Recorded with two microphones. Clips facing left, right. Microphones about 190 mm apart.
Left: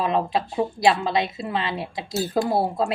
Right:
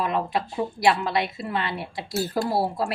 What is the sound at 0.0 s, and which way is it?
A woman's voice, 25° left (ahead or behind).